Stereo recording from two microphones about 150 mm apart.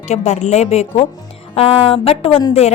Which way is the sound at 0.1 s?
50° left (ahead or behind).